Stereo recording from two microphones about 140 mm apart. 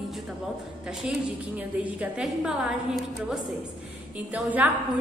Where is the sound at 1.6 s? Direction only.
10° right (ahead or behind).